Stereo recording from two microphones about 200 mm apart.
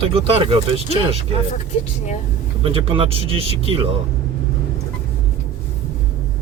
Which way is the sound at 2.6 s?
25° right (ahead or behind).